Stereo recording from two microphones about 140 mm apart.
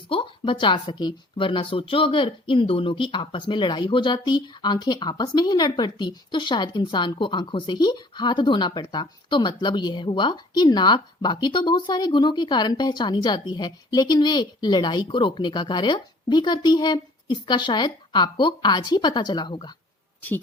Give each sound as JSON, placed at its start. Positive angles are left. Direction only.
{"t": 0.1, "sound": "speech", "side_deg": 35}